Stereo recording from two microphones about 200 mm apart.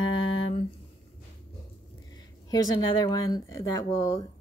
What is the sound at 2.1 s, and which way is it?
Speech, 20° left (ahead or behind).